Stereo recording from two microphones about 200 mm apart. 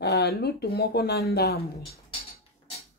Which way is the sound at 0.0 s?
55° left (ahead or behind).